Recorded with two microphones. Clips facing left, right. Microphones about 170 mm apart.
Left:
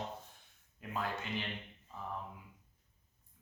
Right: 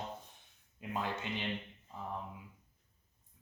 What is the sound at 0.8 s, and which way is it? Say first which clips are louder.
Speech: right 1 dB; 20° right (ahead or behind).